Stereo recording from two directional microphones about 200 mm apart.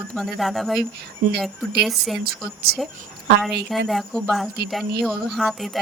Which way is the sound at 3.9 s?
Centre (ahead or behind).